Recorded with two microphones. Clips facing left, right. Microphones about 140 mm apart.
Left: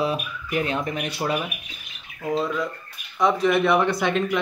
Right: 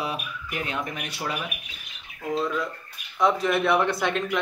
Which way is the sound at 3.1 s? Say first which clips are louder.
Left 3 dB; centre (ahead or behind).